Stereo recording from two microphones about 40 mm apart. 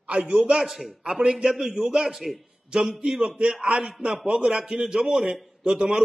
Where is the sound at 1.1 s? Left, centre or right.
Centre.